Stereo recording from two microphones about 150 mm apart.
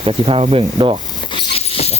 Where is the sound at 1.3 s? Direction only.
35° left (ahead or behind).